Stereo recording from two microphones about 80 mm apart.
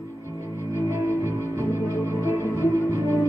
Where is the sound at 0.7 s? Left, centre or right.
Left.